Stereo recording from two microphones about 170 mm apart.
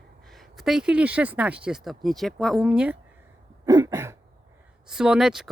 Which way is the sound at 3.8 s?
15° right (ahead or behind).